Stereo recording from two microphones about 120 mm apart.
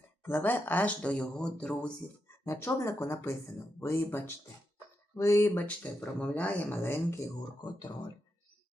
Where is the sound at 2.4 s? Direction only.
20° left (ahead or behind).